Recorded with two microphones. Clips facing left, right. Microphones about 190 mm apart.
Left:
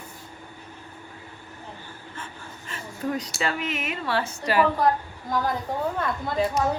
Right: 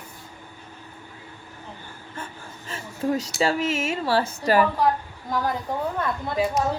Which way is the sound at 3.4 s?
35° right (ahead or behind).